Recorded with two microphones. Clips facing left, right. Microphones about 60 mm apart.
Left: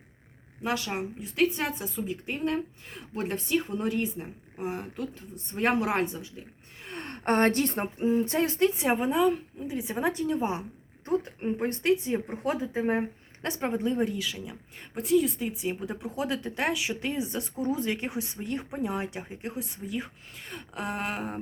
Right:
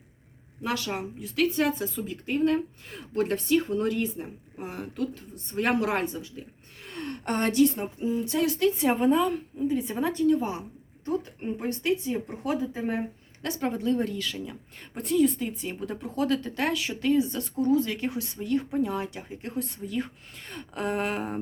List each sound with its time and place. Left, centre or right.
0.6 s speech: centre
6.8 s speech: left; by 21.3 s centre